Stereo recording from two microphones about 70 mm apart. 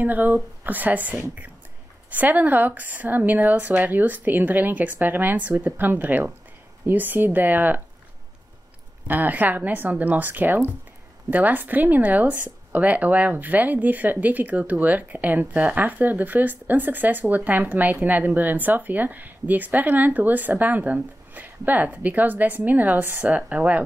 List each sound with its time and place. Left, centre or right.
0.0 s speech: right
9.0 s speech: right